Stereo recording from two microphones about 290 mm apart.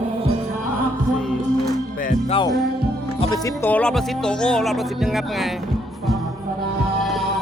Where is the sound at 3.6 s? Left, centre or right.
Centre.